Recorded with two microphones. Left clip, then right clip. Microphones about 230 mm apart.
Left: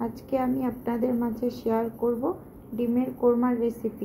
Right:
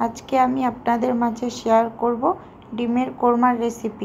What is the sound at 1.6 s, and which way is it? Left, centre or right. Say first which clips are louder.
A woman's voice: right 9 dB; right.